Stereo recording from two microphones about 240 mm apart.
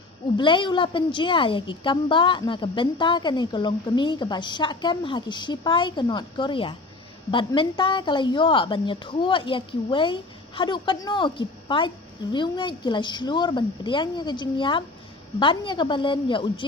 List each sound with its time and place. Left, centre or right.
0.3 s a woman's voice: centre